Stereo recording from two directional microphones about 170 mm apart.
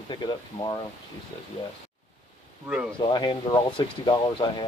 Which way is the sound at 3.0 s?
30° left (ahead or behind).